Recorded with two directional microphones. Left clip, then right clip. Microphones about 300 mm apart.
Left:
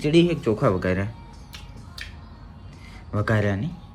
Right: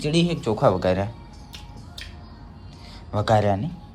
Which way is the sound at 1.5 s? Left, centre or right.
Centre.